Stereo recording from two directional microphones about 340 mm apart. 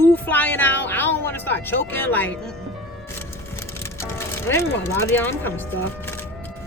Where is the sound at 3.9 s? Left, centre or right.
Centre.